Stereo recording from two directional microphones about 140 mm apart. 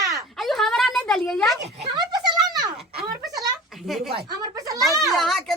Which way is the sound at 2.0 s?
30° right (ahead or behind).